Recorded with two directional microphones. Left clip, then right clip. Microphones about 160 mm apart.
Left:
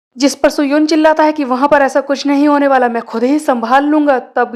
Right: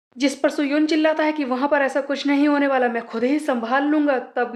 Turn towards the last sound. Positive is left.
turn(degrees=35)  # may be behind; listen again after turning